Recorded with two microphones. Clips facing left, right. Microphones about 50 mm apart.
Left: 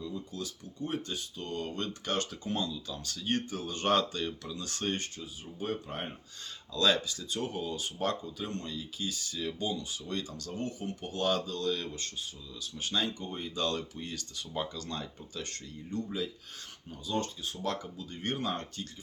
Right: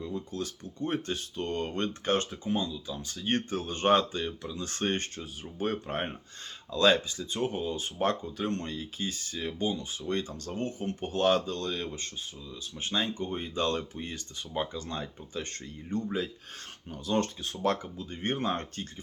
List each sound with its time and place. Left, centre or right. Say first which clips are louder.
0.0 s speech: right 4 dB; right
2.3 s speech: right 3 dB; centre
3.2 s speech: right 3 dB; right; by 4.5 s centre
4.5 s speech: right 6 dB; right